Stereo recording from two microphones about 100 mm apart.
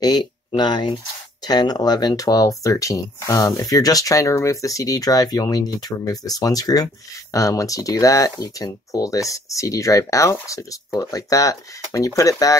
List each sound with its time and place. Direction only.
0.0 s speech: 40° left (ahead or behind)